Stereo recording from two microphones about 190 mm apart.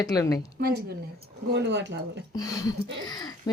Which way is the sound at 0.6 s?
55° right (ahead or behind).